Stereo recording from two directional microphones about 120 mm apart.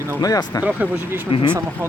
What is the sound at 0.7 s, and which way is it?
Speech, 15° right (ahead or behind).